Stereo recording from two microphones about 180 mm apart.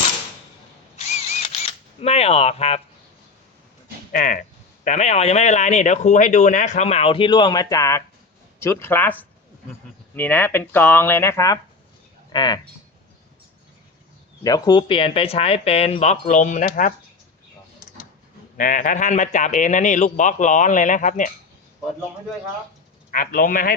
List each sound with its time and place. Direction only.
0.9 s camera: 40° left (ahead or behind)
2.0 s speech: 35° left (ahead or behind)
4.1 s speech: 45° left (ahead or behind); by 12.5 s 25° left (ahead or behind)
14.4 s speech: 20° left (ahead or behind); by 16.9 s 45° left (ahead or behind)
18.5 s speech: 45° left (ahead or behind)
23.1 s speech: 50° left (ahead or behind)